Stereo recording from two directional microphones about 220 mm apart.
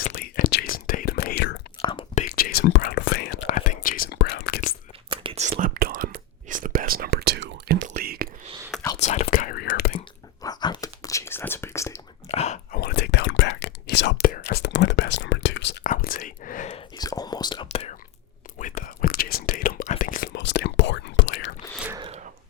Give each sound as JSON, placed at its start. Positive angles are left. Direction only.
{"t": 0.0, "sound": "whispering", "side_deg": 40}
{"t": 1.8, "sound": "whispering", "side_deg": 25}
{"t": 2.3, "sound": "whispering", "side_deg": 45}
{"t": 3.4, "sound": "whispering", "side_deg": 35}
{"t": 5.0, "sound": "whispering", "side_deg": -25}
{"t": 9.0, "sound": "whispering", "side_deg": 30}
{"t": 10.4, "sound": "whispering", "side_deg": 20}
{"t": 12.3, "sound": "whispering", "side_deg": 30}
{"t": 12.8, "sound": "whispering", "side_deg": 50}
{"t": 15.8, "sound": "whispering", "side_deg": 40}
{"t": 17.0, "sound": "whispering", "side_deg": 15}
{"t": 20.3, "sound": "whispering", "side_deg": 50}
{"t": 21.8, "sound": "a sound", "side_deg": -10}